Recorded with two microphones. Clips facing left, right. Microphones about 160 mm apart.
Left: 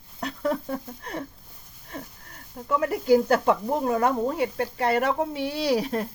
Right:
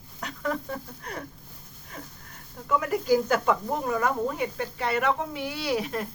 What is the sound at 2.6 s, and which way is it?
Speech, 30° left (ahead or behind).